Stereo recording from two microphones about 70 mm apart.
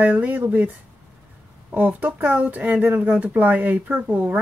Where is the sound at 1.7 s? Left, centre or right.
Centre.